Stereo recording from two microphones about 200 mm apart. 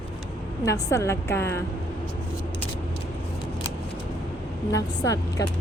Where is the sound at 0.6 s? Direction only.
15° left (ahead or behind).